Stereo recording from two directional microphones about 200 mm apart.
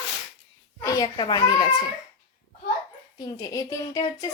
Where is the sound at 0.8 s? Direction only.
20° left (ahead or behind).